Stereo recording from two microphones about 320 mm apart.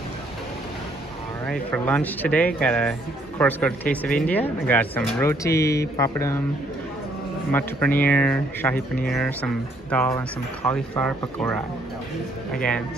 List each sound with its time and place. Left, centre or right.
1.5 s speech: centre
7.5 s speech: centre
9.8 s speech: centre